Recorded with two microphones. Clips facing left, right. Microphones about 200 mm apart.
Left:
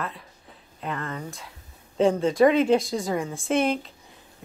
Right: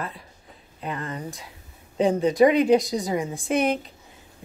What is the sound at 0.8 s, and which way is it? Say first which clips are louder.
A woman's voice: right 1 dB; 15° right (ahead or behind).